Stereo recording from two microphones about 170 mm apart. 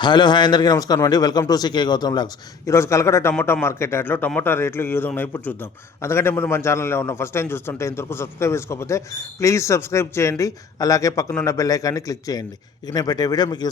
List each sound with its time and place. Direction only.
0.0 s a man's voice: 25° left (ahead or behind)